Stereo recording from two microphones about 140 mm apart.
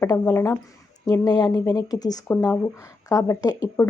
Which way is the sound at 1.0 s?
25° left (ahead or behind).